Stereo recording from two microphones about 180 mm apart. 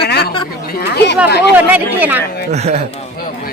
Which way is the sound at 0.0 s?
65° left (ahead or behind).